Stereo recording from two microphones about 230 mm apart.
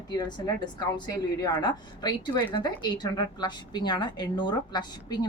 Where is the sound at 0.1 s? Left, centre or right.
Centre.